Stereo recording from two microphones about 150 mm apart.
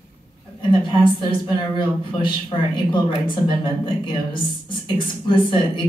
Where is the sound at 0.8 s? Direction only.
30° left (ahead or behind).